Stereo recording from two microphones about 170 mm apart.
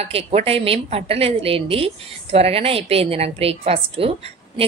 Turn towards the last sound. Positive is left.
turn(degrees=-35)  # may be behind; listen again after turning